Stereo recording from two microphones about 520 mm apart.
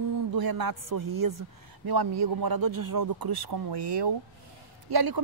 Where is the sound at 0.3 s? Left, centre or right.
Right.